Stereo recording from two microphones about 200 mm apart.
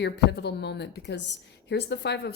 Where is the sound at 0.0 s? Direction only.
55° left (ahead or behind).